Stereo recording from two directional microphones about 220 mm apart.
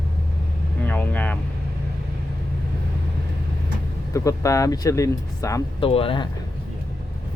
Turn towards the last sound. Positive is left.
turn(degrees=25)  # may be behind; listen again after turning